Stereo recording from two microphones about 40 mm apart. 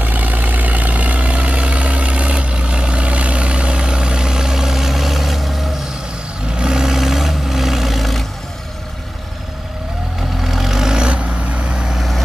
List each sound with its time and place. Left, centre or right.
0.0 s vehicle: right; by 5.7 s centre
6.5 s vehicle: centre
10.4 s vehicle: centre